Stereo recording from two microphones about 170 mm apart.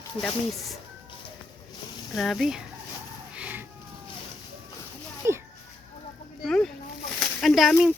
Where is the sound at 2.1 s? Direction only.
Centre (ahead or behind).